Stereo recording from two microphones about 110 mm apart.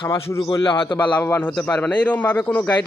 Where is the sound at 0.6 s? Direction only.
50° left (ahead or behind).